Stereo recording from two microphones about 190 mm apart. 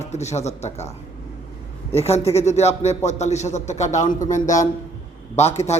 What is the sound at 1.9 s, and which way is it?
A man's voice, 35° left (ahead or behind).